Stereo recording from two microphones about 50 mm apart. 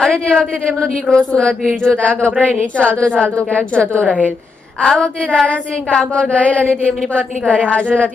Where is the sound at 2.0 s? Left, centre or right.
Left.